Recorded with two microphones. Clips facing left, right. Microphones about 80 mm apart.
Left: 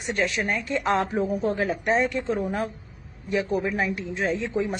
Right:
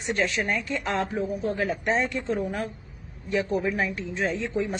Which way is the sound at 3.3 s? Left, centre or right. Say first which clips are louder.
Left 1 dB; centre.